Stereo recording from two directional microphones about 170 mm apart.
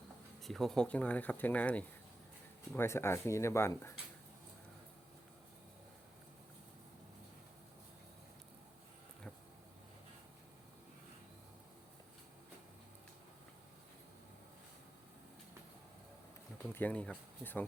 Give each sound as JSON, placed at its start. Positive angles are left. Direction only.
{"t": 0.4, "sound": "speech", "side_deg": 0}
{"t": 16.7, "sound": "speech", "side_deg": 10}